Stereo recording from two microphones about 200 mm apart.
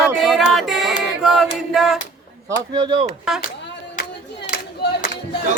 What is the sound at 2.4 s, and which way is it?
Speech, 20° right (ahead or behind).